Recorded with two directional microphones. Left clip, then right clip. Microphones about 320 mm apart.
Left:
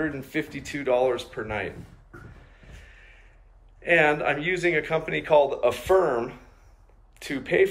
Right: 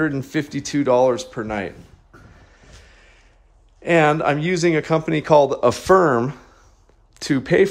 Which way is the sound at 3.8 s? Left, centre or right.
Right.